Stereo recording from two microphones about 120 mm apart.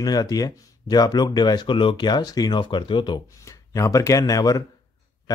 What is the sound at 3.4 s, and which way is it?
Speech, 25° left (ahead or behind).